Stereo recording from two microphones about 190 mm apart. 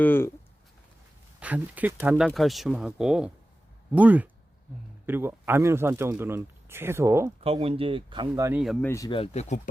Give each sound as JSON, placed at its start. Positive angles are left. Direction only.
{"t": 0.0, "sound": "speech", "side_deg": 10}
{"t": 1.4, "sound": "speech", "side_deg": -10}
{"t": 7.4, "sound": "speech", "side_deg": -30}
{"t": 8.4, "sound": "speech", "side_deg": -5}
{"t": 8.8, "sound": "speech", "side_deg": 10}
{"t": 9.0, "sound": "speech", "side_deg": 30}